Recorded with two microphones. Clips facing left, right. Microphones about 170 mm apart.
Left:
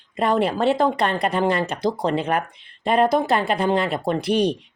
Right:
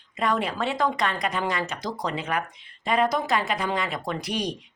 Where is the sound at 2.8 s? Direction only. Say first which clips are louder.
Left 5 dB; 60° left (ahead or behind).